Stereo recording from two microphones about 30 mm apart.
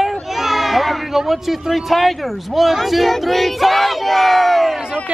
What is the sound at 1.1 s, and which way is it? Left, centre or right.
Speech, centre.